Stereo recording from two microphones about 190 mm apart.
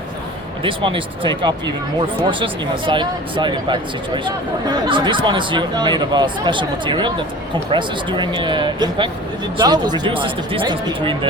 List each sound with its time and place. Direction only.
0.6 s speech: 25° right (ahead or behind)